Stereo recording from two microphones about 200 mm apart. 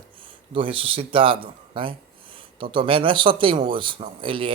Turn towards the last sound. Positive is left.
turn(degrees=-25)  # may be behind; listen again after turning